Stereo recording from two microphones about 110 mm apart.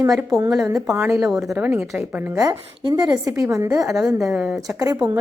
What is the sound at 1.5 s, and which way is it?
Speech, 15° right (ahead or behind).